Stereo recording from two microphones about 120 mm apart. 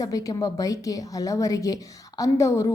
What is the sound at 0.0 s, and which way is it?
A woman's voice, 30° left (ahead or behind).